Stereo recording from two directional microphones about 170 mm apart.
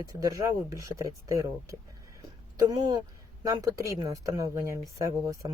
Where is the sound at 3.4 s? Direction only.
20° right (ahead or behind).